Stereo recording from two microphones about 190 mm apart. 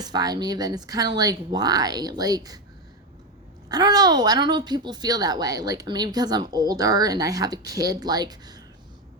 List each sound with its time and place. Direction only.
0.0 s a woman's voice: 20° right (ahead or behind)
3.7 s a woman's voice: 20° right (ahead or behind)